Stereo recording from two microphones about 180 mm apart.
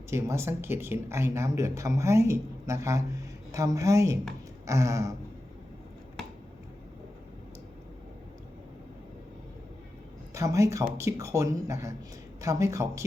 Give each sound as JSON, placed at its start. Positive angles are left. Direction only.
{"t": 0.1, "sound": "speech", "side_deg": -15}
{"t": 10.3, "sound": "speech", "side_deg": -15}